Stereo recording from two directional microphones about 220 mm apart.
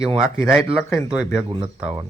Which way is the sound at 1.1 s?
5° right (ahead or behind).